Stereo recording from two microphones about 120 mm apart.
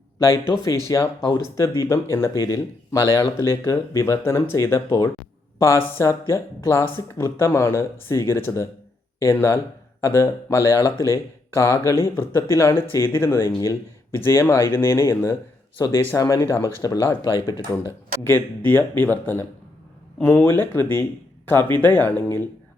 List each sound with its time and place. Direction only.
0.2 s speech: 25° left (ahead or behind)
18.2 s speech: 20° left (ahead or behind)